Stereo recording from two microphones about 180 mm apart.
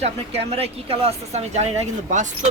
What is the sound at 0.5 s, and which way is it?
Speech, 35° right (ahead or behind).